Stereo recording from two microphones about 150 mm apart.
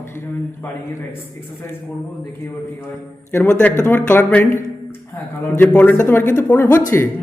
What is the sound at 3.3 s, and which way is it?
Speech, 15° left (ahead or behind).